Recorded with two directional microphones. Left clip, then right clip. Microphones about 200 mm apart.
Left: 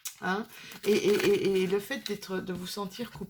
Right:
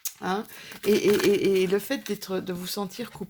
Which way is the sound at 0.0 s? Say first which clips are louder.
Right 3 dB; 40° right (ahead or behind).